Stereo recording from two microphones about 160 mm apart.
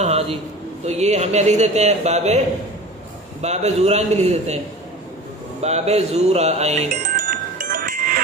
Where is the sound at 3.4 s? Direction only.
45° right (ahead or behind).